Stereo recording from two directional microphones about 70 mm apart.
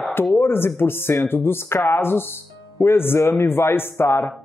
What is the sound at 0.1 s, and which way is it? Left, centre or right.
Speech, left.